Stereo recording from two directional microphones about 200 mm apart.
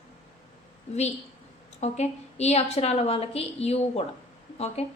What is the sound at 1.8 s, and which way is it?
A woman's voice, 35° left (ahead or behind).